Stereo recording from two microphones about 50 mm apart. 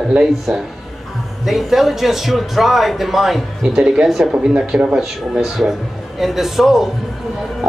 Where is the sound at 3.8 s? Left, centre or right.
Centre.